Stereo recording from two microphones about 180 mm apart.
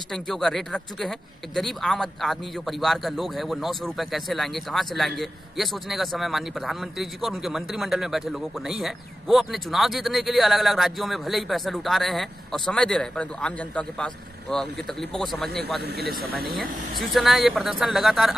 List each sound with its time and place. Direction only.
0.1 s speech: centre (ahead or behind)
15.8 s speech: 60° right (ahead or behind)
17.1 s speech: centre (ahead or behind)